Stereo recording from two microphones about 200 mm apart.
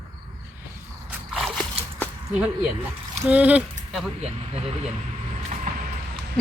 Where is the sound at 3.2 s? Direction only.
5° right (ahead or behind).